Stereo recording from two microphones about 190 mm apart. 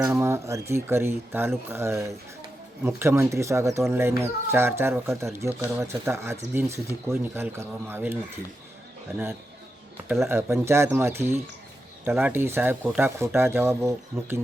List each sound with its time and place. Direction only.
0.0 s speech: 15° right (ahead or behind)
10.1 s speech: 15° right (ahead or behind)